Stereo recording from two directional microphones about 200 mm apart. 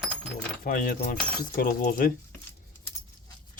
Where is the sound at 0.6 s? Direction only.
45° left (ahead or behind).